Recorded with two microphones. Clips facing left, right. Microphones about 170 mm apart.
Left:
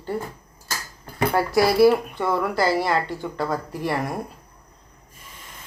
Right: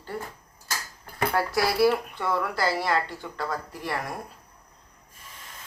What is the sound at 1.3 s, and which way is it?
Speech, 20° left (ahead or behind).